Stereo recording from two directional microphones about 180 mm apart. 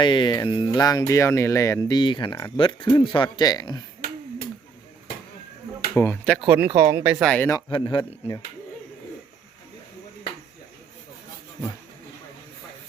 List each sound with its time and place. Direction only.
0.0 s speech: 25° left (ahead or behind)
5.9 s speech: 10° left (ahead or behind)
6.5 s speech: 10° right (ahead or behind)
7.3 s speech: 10° left (ahead or behind)
7.7 s speech: 25° left (ahead or behind)